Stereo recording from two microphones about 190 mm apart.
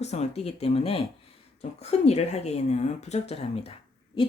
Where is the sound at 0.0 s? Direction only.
35° left (ahead or behind).